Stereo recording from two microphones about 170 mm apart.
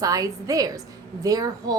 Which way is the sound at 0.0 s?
20° right (ahead or behind).